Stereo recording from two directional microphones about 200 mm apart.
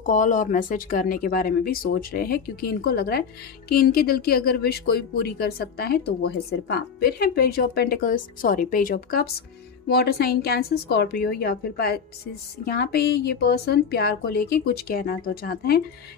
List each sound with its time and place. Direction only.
0.0 s speech: 40° left (ahead or behind)